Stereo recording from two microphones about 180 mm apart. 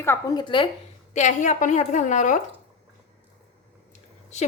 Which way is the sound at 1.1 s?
40° left (ahead or behind).